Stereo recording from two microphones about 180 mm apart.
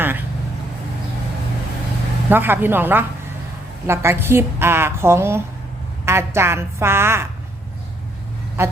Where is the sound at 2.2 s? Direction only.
10° right (ahead or behind).